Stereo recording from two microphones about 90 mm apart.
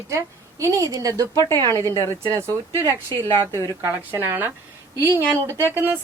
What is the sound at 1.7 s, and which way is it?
A woman's voice, 30° left (ahead or behind).